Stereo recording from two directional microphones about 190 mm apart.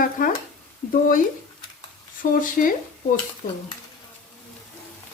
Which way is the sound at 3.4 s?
45° left (ahead or behind).